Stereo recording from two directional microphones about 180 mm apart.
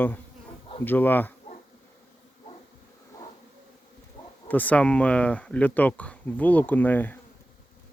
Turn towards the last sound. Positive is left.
turn(degrees=10)  # may be behind; listen again after turning